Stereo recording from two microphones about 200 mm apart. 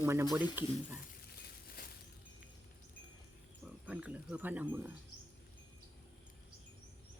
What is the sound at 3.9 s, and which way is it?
Speech, 5° right (ahead or behind).